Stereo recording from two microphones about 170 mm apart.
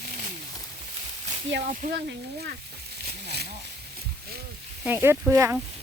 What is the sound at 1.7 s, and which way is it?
Speech, 50° right (ahead or behind).